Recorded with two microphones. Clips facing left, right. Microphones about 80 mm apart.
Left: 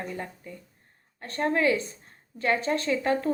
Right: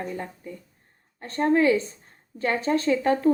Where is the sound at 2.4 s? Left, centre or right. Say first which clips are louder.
Right 1 dB; right.